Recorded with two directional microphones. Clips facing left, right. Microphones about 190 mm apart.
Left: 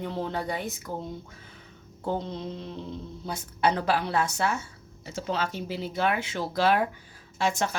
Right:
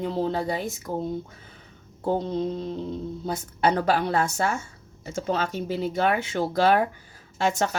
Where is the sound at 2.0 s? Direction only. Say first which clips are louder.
Right 6 dB; 45° right (ahead or behind).